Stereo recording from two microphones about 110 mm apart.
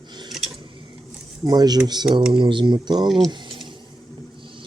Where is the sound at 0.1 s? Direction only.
40° right (ahead or behind).